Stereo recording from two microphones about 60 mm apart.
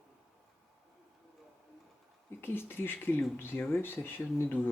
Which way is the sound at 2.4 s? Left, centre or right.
Left.